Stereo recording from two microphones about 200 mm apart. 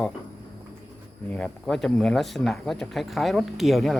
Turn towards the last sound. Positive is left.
turn(degrees=0)  # may be behind; listen again after turning